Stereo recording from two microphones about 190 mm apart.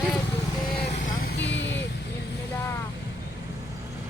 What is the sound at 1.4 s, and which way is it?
Vehicle, 65° left (ahead or behind).